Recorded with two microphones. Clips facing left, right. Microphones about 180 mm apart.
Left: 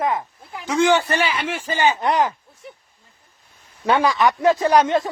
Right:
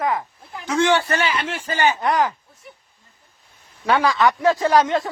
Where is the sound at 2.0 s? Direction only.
20° left (ahead or behind).